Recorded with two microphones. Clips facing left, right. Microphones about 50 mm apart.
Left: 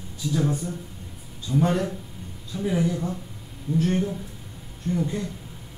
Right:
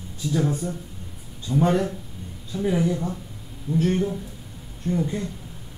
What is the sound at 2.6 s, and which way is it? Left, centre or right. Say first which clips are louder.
Speech: right 2 dB; centre.